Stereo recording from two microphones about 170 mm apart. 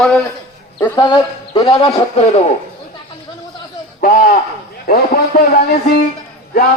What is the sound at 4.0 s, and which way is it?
A man's voice, 55° left (ahead or behind).